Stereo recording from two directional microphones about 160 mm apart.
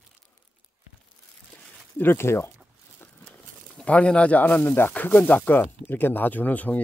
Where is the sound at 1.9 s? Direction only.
15° left (ahead or behind).